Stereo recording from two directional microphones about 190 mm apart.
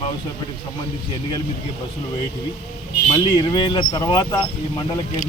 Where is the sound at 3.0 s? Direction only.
25° left (ahead or behind).